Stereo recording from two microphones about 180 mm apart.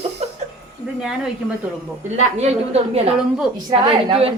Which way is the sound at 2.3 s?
35° right (ahead or behind).